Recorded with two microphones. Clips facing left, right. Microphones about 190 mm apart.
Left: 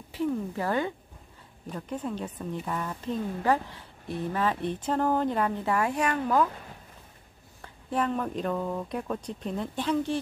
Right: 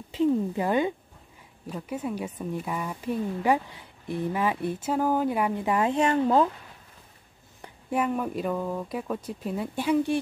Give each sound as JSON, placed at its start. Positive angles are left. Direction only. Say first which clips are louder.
{"t": 0.1, "sound": "a woman's voice", "louder": "right 5 dB", "side_deg": -20}
{"t": 1.7, "sound": "a woman's voice", "louder": "right 2 dB", "side_deg": -5}
{"t": 7.6, "sound": "a woman's voice", "louder": "right 2 dB", "side_deg": -10}